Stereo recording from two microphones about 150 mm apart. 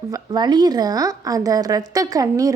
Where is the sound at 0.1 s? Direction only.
30° right (ahead or behind).